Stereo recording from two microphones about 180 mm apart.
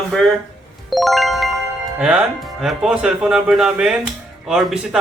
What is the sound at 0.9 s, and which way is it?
Music, centre (ahead or behind).